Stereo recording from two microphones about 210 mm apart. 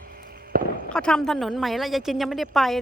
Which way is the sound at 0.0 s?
45° right (ahead or behind).